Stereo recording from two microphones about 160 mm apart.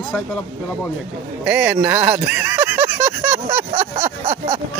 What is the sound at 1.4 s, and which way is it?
Speech, 5° right (ahead or behind).